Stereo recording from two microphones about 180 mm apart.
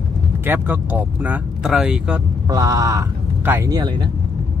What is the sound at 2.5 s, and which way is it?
Speech, 20° right (ahead or behind).